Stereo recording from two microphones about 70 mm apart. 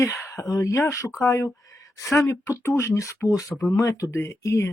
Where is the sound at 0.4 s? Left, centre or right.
Left.